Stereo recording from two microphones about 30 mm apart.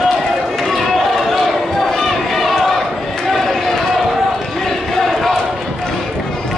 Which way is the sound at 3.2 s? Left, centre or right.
Centre.